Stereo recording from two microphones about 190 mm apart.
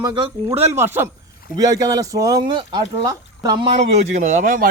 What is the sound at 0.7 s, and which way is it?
Speech, 10° right (ahead or behind).